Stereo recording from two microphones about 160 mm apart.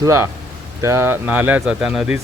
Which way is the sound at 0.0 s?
15° right (ahead or behind).